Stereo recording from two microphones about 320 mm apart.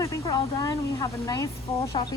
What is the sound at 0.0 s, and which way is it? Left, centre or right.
Speech, centre.